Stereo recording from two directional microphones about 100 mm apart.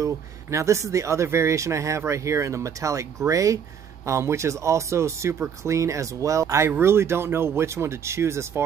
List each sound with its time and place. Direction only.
0.0 s speech: 30° right (ahead or behind)